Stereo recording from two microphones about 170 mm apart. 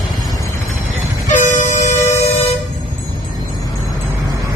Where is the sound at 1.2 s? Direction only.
45° left (ahead or behind).